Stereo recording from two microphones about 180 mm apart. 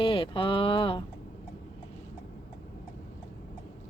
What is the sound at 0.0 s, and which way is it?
Speech, 30° left (ahead or behind).